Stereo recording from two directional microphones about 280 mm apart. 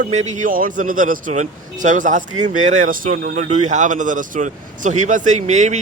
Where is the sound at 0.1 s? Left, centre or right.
Right.